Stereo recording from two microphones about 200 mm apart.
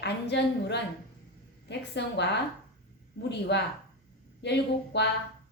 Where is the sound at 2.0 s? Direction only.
60° left (ahead or behind).